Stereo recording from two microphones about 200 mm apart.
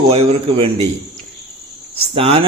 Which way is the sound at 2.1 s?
30° right (ahead or behind).